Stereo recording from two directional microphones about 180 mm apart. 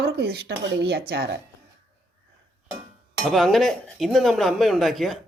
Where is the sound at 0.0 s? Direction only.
65° right (ahead or behind).